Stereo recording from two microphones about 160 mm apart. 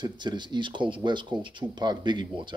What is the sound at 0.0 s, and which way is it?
Speech, 30° right (ahead or behind).